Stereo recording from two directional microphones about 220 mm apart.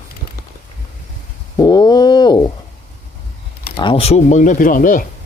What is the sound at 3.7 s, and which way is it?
Speech, 20° left (ahead or behind).